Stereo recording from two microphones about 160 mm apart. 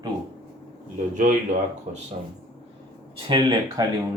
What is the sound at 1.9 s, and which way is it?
Speech, 50° right (ahead or behind).